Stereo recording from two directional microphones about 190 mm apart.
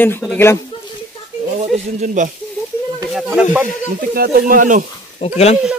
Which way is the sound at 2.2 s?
40° right (ahead or behind).